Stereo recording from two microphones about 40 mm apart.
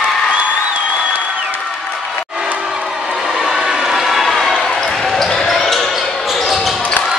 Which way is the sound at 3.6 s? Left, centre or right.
Centre.